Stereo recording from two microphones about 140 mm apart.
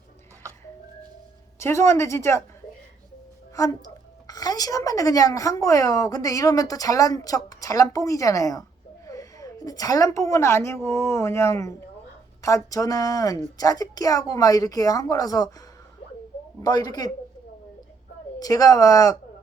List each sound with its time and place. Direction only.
1.5 s a woman's voice: 20° left (ahead or behind)
3.5 s a woman's voice: 25° left (ahead or behind)
16.6 s a woman's voice: 30° left (ahead or behind)
18.3 s a woman's voice: 25° left (ahead or behind)